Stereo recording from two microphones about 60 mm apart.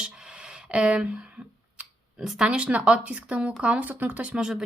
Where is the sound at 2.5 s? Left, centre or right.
Right.